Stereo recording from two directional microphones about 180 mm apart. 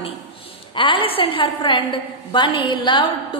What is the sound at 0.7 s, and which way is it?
A woman's voice, 30° left (ahead or behind).